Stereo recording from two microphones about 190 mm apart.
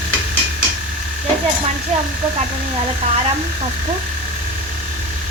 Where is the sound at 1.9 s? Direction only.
35° right (ahead or behind).